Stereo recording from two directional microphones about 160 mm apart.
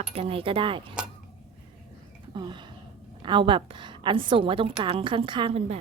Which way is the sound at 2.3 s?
30° right (ahead or behind).